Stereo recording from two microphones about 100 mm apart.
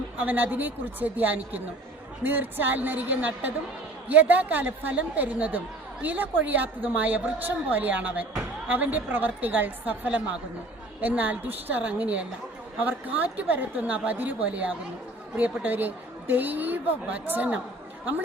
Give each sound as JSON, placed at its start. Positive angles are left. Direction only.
{"t": 0.2, "sound": "a woman's voice", "side_deg": -15}